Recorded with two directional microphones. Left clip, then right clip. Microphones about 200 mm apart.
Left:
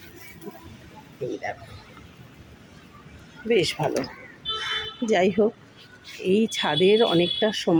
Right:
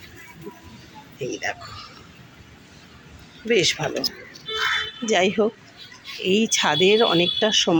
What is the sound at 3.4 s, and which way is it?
Speech, 5° left (ahead or behind).